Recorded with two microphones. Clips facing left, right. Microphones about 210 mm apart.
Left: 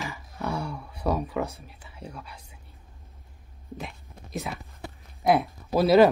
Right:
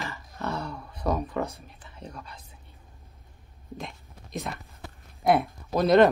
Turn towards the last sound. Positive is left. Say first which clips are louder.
# left 1 dB
turn(degrees=5)  # may be behind; listen again after turning